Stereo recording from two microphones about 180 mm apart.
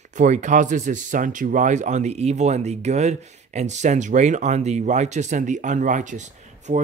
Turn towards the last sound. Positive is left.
turn(degrees=-40)  # may be behind; listen again after turning